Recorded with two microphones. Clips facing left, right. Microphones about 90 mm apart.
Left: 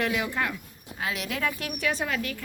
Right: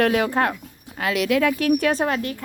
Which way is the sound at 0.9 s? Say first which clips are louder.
Right 11 dB; 85° right.